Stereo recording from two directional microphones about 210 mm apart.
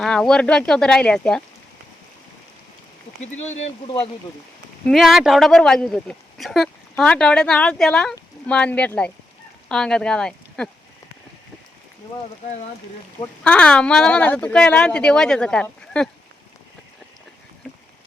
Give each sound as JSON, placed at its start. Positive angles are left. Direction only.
{"t": 0.0, "sound": "speech", "side_deg": 5}
{"t": 3.2, "sound": "speech", "side_deg": 30}
{"t": 4.9, "sound": "speech", "side_deg": 0}
{"t": 12.4, "sound": "speech", "side_deg": 35}
{"t": 13.4, "sound": "speech", "side_deg": 5}